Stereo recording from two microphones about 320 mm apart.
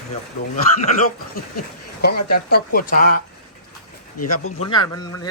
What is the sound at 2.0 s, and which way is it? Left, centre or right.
Speech, left.